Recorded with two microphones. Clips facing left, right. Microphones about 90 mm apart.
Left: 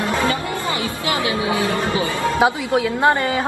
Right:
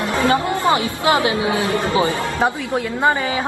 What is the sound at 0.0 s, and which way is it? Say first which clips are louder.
Music: right 3 dB; 25° right (ahead or behind).